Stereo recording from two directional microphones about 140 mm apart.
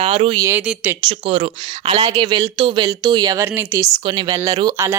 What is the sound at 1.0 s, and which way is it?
Speech, 40° right (ahead or behind).